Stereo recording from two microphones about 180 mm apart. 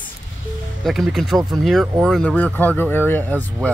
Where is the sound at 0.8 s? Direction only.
Centre (ahead or behind).